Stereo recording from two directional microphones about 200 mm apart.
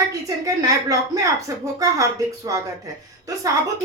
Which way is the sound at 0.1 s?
15° right (ahead or behind).